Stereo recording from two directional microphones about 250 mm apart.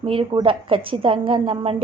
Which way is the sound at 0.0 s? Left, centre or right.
Right.